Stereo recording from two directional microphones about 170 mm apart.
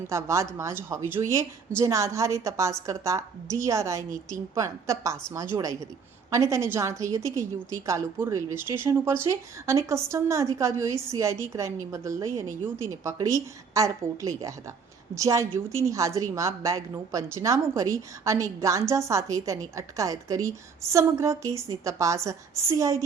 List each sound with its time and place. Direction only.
0.1 s a woman's voice: 15° right (ahead or behind)